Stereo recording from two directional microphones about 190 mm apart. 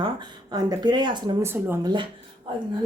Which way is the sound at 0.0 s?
20° right (ahead or behind).